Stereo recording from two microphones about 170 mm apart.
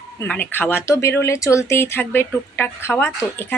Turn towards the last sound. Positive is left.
turn(degrees=15)  # may be behind; listen again after turning